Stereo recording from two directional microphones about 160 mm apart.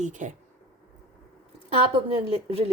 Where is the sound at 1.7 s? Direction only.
35° right (ahead or behind).